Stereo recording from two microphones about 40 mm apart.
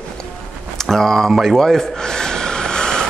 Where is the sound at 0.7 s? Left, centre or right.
Centre.